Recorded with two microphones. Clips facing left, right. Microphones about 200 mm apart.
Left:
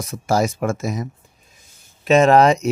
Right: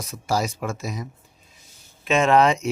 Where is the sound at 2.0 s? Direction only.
40° left (ahead or behind).